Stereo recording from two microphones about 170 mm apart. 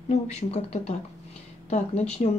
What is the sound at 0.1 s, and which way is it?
Speech, 40° left (ahead or behind).